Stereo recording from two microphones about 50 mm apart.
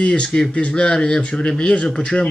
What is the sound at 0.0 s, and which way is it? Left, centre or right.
Speech, left.